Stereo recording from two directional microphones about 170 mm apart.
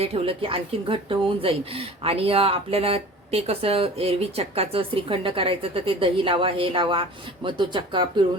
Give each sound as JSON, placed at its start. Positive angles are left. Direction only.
{"t": 0.0, "sound": "a woman's voice", "side_deg": -35}